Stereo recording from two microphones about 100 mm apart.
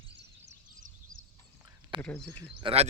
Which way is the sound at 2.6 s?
75° right (ahead or behind).